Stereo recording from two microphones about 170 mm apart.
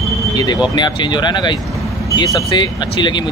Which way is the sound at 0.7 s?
25° left (ahead or behind).